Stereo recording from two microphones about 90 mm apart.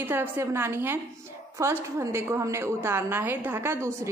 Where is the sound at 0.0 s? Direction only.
25° right (ahead or behind).